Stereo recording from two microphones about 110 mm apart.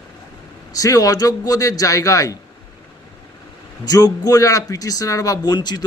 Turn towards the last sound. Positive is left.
turn(degrees=40)  # may be behind; listen again after turning